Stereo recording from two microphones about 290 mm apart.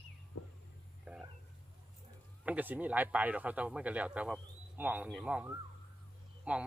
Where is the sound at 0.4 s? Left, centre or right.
Left.